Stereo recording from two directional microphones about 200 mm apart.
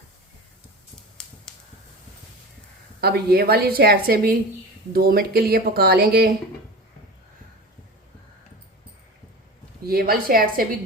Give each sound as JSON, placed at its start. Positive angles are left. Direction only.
{"t": 3.0, "sound": "speech", "side_deg": -50}
{"t": 9.8, "sound": "speech", "side_deg": -50}